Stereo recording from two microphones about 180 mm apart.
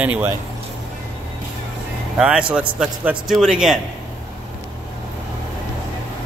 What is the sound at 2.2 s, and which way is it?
A man's voice, 5° right (ahead or behind).